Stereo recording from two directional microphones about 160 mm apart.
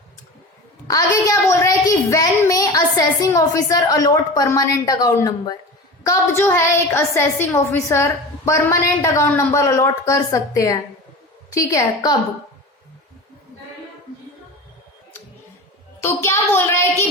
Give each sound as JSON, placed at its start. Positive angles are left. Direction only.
{"t": 0.9, "sound": "a woman's voice", "side_deg": 20}
{"t": 6.3, "sound": "a woman's voice", "side_deg": 15}
{"t": 16.0, "sound": "a woman's voice", "side_deg": 15}